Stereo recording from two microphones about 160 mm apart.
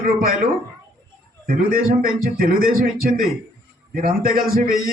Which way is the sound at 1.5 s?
65° right (ahead or behind).